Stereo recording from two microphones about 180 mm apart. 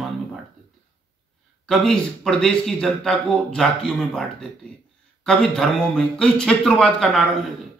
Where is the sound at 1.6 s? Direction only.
5° left (ahead or behind).